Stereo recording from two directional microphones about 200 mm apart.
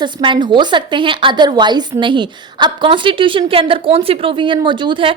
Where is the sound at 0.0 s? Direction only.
25° right (ahead or behind).